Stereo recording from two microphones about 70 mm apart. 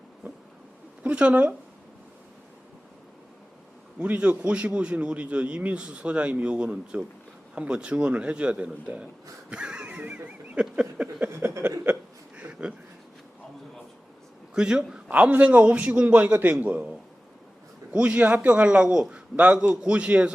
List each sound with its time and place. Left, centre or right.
1.0 s a man's voice: centre
4.0 s a man's voice: centre
9.5 s wheeze: centre
11.3 s a sound: right
12.4 s a sound: centre
14.5 s a man's voice: centre
17.9 s a man's voice: centre